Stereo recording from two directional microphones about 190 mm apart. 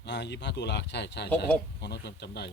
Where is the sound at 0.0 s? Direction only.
65° left (ahead or behind).